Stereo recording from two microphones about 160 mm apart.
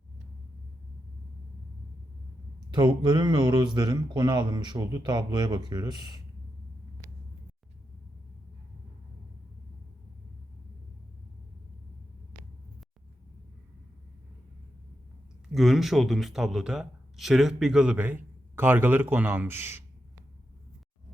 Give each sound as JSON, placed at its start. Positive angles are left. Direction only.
{"t": 2.7, "sound": "speech", "side_deg": -30}
{"t": 15.5, "sound": "a man's voice", "side_deg": 0}